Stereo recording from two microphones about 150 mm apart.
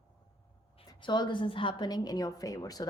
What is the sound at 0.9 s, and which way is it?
A woman's voice, 30° left (ahead or behind).